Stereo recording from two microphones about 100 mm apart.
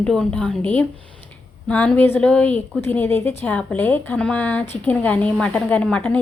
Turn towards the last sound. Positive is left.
turn(degrees=15)  # may be behind; listen again after turning